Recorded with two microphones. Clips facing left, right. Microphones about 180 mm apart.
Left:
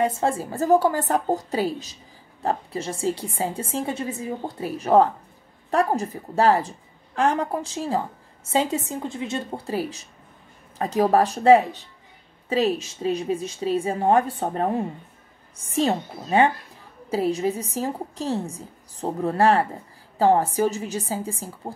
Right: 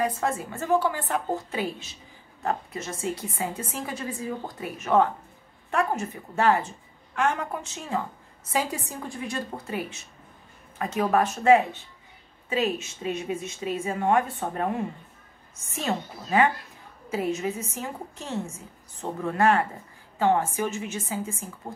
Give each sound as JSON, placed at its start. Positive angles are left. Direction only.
{"t": 0.0, "sound": "a woman's voice", "side_deg": 30}